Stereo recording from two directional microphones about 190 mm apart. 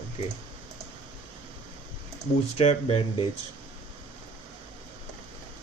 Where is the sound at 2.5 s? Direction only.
30° left (ahead or behind).